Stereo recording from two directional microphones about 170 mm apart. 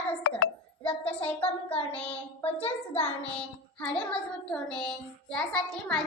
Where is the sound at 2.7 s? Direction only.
35° left (ahead or behind).